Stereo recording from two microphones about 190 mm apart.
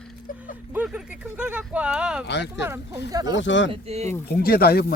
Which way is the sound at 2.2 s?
65° left (ahead or behind).